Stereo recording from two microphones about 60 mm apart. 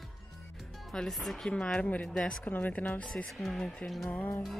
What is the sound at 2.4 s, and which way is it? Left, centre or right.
Speech, left.